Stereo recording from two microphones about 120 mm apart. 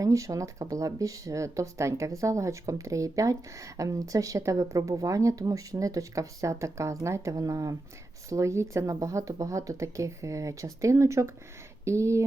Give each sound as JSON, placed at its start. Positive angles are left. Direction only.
{"t": 0.0, "sound": "speech", "side_deg": -25}